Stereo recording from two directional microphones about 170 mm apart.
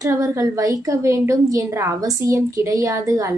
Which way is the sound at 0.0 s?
20° right (ahead or behind).